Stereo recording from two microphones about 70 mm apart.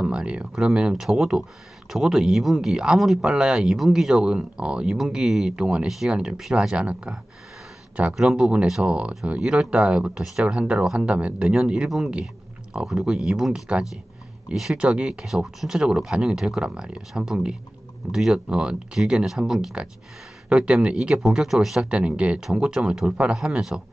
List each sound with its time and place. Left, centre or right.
0.0 s speech: centre
21.9 s speech: centre